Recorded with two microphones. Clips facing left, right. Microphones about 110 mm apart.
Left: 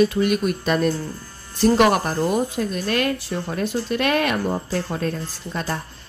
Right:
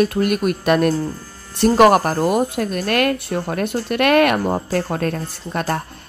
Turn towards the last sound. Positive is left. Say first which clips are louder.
# right 5 dB
turn(degrees=-55)  # may be behind; listen again after turning